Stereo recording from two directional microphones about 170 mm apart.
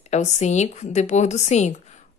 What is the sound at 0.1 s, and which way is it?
Speech, 40° left (ahead or behind).